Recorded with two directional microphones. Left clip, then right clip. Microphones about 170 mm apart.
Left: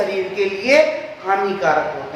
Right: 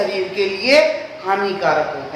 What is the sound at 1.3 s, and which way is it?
Speech, 20° right (ahead or behind).